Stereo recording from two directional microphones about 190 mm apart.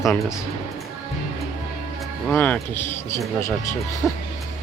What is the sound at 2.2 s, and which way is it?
Speech, 10° left (ahead or behind).